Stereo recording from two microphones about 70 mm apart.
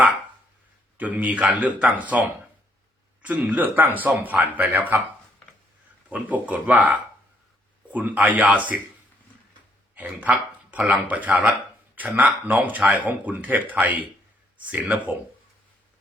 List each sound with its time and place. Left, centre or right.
0.9 s speech: right
3.2 s speech: right
6.1 s speech: right
9.9 s speech: right